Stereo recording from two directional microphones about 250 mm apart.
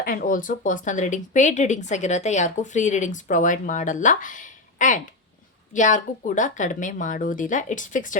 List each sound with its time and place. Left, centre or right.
0.0 s speech: left